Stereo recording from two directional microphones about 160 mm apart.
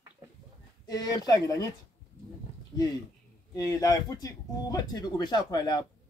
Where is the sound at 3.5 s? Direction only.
20° left (ahead or behind).